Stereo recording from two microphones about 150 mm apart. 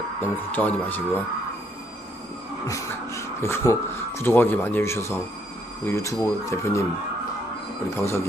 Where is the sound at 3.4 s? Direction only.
20° left (ahead or behind).